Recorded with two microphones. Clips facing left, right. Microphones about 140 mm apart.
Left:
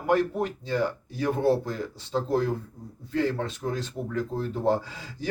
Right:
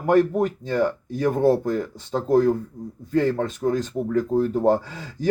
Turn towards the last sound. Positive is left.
turn(degrees=-45)  # may be behind; listen again after turning